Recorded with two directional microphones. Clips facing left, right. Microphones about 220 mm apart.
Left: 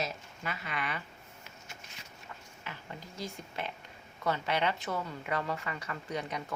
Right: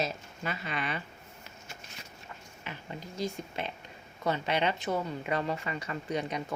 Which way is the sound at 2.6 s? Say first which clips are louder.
Right 4 dB; 20° right (ahead or behind).